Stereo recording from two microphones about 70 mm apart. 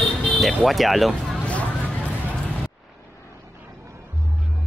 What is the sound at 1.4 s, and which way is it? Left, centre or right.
Vehicle, centre.